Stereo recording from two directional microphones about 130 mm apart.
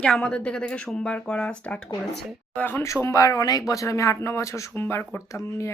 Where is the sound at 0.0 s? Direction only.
5° left (ahead or behind).